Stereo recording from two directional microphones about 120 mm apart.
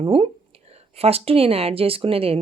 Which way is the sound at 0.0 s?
50° right (ahead or behind).